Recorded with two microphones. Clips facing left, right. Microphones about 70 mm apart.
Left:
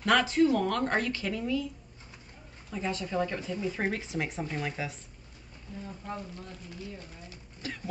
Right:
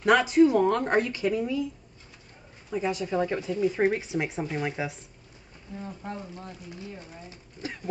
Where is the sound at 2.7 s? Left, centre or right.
Centre.